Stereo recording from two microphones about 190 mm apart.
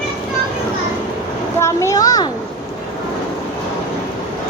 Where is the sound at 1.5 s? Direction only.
15° left (ahead or behind).